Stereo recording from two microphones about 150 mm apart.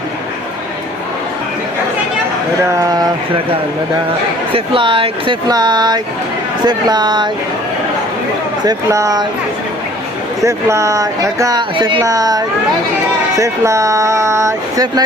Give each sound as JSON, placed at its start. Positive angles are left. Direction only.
{"t": 4.5, "sound": "speech", "side_deg": -35}
{"t": 8.6, "sound": "speech", "side_deg": -20}
{"t": 10.4, "sound": "speech", "side_deg": -20}